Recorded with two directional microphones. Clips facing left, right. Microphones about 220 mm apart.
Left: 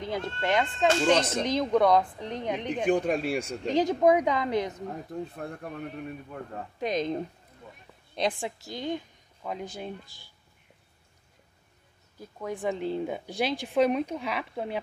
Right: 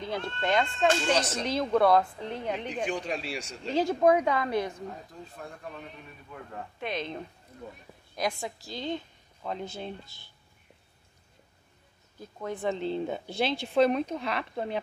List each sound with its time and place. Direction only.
0.3 s speech: 10° left (ahead or behind)
1.0 s speech: 55° left (ahead or behind)
1.4 s speech: 15° left (ahead or behind)
2.7 s speech: 55° left (ahead or behind)
3.6 s speech: 15° left (ahead or behind)
5.1 s speech: 60° left (ahead or behind)
6.5 s speech: 40° left (ahead or behind)
7.6 s speech: 40° right (ahead or behind)
8.2 s a woman's voice: 30° left (ahead or behind); by 9.9 s 10° left (ahead or behind)
12.2 s speech: 10° left (ahead or behind)